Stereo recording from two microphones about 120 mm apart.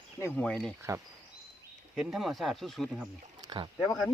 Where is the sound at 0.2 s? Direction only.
20° left (ahead or behind).